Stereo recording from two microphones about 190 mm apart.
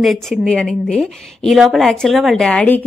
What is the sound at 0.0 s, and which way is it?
A woman's voice, centre (ahead or behind).